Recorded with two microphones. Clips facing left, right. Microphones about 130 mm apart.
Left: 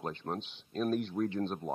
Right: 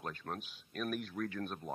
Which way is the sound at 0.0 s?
25° left (ahead or behind).